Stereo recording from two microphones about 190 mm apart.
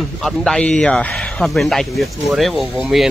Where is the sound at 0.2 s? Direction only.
Centre (ahead or behind).